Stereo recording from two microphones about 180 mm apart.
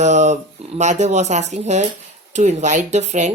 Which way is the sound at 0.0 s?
40° right (ahead or behind).